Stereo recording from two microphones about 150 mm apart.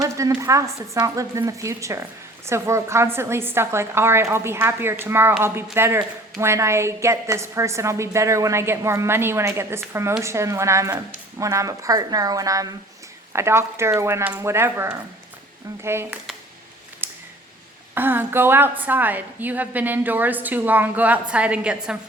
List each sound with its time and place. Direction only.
0.0 s a woman's voice: 20° right (ahead or behind)
17.0 s a sound: 15° right (ahead or behind)
17.9 s a woman's voice: 15° right (ahead or behind)